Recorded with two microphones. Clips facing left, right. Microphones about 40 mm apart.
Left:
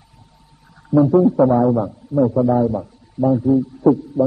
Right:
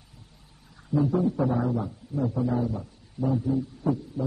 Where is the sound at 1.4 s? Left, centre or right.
Left.